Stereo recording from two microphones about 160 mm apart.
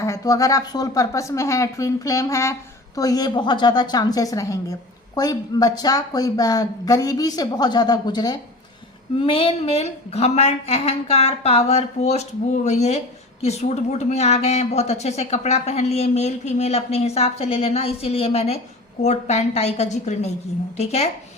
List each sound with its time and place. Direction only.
0.0 s a woman's voice: 20° left (ahead or behind); by 21.1 s 40° left (ahead or behind)